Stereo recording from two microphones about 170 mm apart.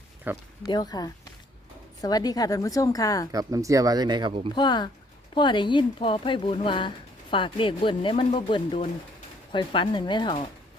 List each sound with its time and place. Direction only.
0.3 s speech: 10° right (ahead or behind)
0.6 s speech: 25° left (ahead or behind)
3.3 s speech: 20° right (ahead or behind)
4.5 s speech: 25° left (ahead or behind)